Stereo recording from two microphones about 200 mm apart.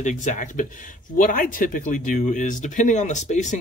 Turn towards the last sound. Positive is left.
turn(degrees=35)  # may be behind; listen again after turning